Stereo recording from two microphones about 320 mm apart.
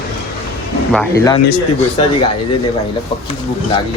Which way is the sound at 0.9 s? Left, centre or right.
Centre.